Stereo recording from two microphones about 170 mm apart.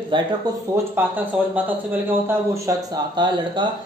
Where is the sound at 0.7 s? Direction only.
10° right (ahead or behind).